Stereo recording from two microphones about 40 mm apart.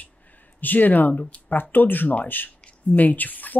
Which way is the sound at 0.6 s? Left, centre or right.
Left.